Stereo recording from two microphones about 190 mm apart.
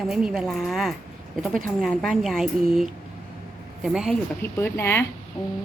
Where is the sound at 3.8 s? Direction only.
Centre (ahead or behind).